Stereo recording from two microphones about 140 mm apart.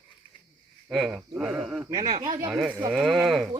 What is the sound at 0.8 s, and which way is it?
Speech, 5° right (ahead or behind).